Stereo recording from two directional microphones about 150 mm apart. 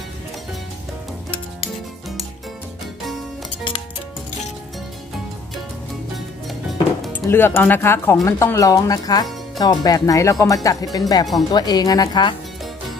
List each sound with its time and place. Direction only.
7.2 s speech: 15° left (ahead or behind)